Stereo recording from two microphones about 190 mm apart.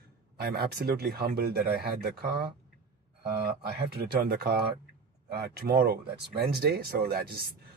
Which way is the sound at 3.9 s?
55° right (ahead or behind).